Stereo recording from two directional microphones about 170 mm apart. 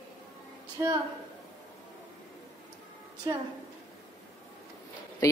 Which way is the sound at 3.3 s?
20° right (ahead or behind).